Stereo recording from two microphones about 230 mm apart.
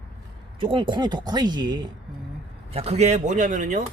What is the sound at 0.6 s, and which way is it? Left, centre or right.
Speech, right.